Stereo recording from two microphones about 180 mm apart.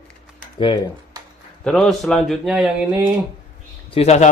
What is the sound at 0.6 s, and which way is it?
Speech, 25° left (ahead or behind).